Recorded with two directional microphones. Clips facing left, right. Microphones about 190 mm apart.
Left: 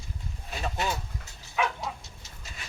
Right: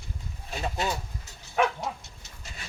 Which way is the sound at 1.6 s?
45° right (ahead or behind).